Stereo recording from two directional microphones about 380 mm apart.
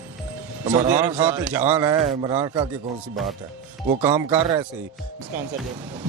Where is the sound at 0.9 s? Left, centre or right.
Centre.